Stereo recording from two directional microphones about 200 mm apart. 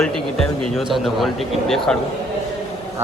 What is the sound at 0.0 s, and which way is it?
A man's voice, centre (ahead or behind).